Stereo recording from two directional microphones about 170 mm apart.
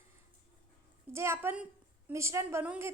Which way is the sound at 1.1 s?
15° right (ahead or behind).